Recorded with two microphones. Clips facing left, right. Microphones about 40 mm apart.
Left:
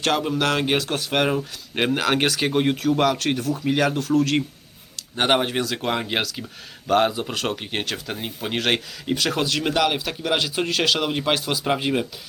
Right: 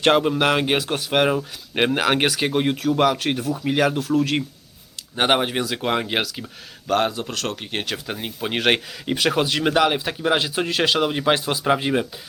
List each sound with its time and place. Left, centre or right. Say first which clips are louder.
0.0 s speech: right 4 dB; right
11.6 s speech: right 2 dB; centre